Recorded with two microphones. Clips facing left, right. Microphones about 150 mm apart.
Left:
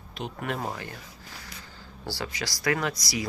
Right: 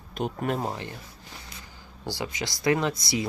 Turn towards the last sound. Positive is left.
turn(degrees=-25)  # may be behind; listen again after turning